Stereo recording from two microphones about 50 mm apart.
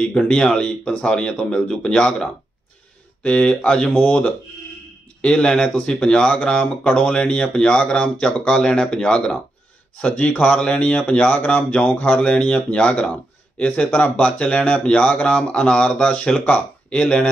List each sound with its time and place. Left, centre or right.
0.2 s speech: centre
3.9 s speech: left
5.2 s speech: centre